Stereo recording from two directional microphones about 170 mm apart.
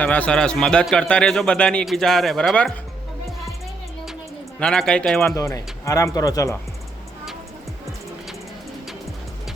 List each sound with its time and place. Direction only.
0.0 s speech: 10° left (ahead or behind)
4.6 s speech: 5° left (ahead or behind)
5.3 s speech: 20° left (ahead or behind)